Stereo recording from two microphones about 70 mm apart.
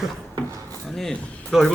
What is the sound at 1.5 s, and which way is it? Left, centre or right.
Speech, centre.